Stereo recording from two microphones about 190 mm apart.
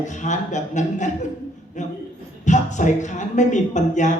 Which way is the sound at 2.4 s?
40° left (ahead or behind).